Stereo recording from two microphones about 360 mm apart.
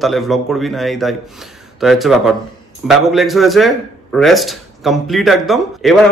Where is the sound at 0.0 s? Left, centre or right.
Centre.